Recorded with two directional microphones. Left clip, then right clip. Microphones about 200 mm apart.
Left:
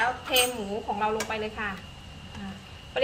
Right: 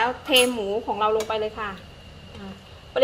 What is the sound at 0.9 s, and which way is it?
Speech, 30° right (ahead or behind).